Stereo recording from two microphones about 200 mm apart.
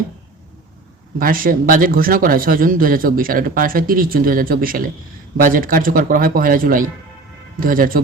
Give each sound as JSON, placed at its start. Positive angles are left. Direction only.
{"t": 1.2, "sound": "speech", "side_deg": -45}